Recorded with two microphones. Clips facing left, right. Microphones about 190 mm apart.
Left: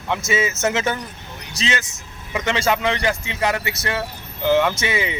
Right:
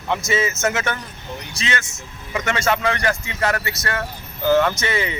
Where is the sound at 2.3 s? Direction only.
20° left (ahead or behind).